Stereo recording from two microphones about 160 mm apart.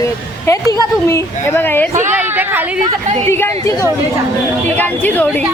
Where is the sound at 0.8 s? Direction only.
15° left (ahead or behind).